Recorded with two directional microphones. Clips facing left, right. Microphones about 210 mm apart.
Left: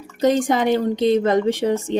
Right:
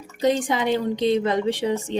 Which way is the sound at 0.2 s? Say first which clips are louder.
Left 4 dB; 45° left (ahead or behind).